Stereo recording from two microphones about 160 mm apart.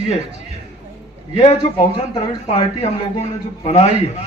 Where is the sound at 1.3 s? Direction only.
35° left (ahead or behind).